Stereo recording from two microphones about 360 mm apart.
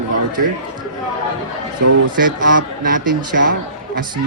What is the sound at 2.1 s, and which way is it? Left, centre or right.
Speech, right.